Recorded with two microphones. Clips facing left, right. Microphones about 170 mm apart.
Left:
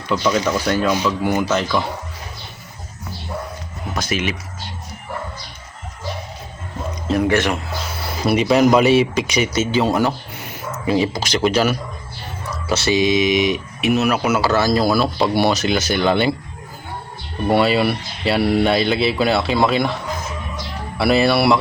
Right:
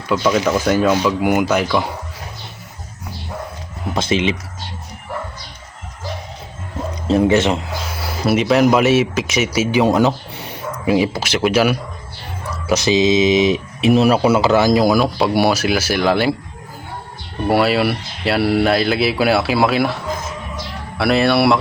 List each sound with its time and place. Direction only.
0.1 s speech: 5° right (ahead or behind)
3.9 s speech: 25° right (ahead or behind)
7.1 s speech: 25° right (ahead or behind)
8.0 s speech: 5° right (ahead or behind)
17.5 s speech: 5° right (ahead or behind)
21.0 s speech: centre (ahead or behind)